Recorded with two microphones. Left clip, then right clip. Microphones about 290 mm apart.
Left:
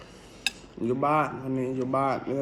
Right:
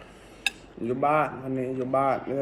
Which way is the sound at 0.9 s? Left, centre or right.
Left.